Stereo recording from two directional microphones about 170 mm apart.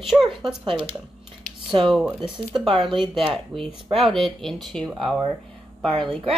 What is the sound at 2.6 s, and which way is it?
Speech, 30° right (ahead or behind).